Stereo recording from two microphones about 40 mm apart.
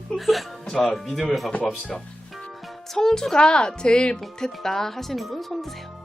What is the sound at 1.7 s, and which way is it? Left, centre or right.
Speech, centre.